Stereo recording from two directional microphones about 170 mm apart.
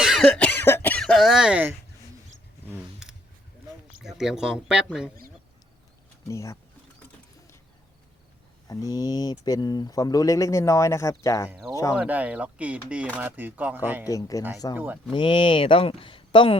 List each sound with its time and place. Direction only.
0.0 s cough: centre (ahead or behind)
2.6 s a sound: 5° right (ahead or behind)
4.0 s speech: 5° right (ahead or behind)
6.2 s speech: 15° left (ahead or behind)
8.6 s speech: 20° left (ahead or behind)
11.4 s speech: 5° right (ahead or behind)
14.1 s speech: 20° left (ahead or behind)